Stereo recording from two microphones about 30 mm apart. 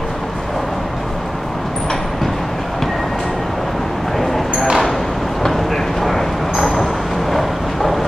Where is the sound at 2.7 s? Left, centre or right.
Centre.